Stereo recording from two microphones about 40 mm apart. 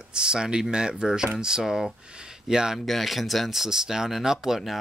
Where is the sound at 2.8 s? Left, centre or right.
Centre.